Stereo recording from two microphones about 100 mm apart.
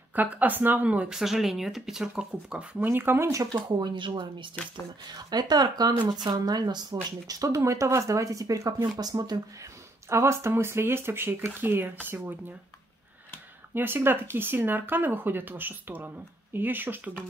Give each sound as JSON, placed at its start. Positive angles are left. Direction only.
{"t": 0.1, "sound": "speech", "side_deg": -15}
{"t": 2.8, "sound": "speech", "side_deg": -20}
{"t": 3.3, "sound": "speech", "side_deg": -40}
{"t": 5.1, "sound": "speech", "side_deg": -45}
{"t": 13.7, "sound": "speech", "side_deg": -20}